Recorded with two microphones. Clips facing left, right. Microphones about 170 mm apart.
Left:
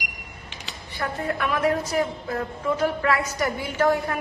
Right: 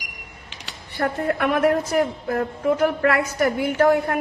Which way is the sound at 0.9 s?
60° right (ahead or behind).